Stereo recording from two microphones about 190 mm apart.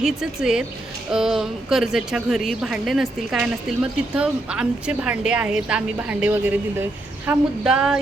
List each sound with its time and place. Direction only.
0.0 s a woman's voice: 5° right (ahead or behind)